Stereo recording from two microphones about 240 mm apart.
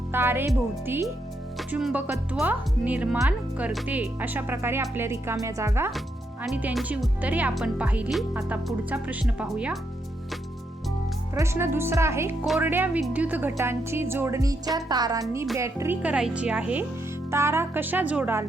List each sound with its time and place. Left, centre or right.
0.1 s speech: centre
11.3 s speech: centre